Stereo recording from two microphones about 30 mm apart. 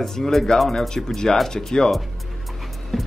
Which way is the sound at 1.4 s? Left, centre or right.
Centre.